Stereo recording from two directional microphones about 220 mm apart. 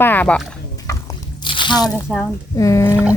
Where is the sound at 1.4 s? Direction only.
20° left (ahead or behind).